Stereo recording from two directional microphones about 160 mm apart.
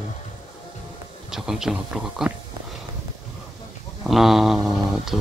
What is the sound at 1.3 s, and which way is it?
Speech, 5° right (ahead or behind).